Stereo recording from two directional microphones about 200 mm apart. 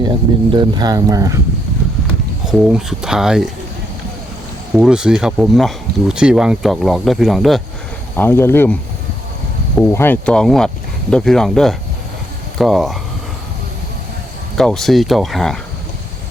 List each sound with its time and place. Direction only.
0.0 s speech: 20° right (ahead or behind)
2.5 s speech: 5° right (ahead or behind)
4.8 s speech: 5° right (ahead or behind)
9.9 s speech: 10° left (ahead or behind)
14.5 s speech: 5° left (ahead or behind)